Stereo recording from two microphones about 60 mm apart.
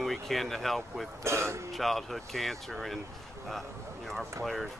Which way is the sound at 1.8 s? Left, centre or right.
Centre.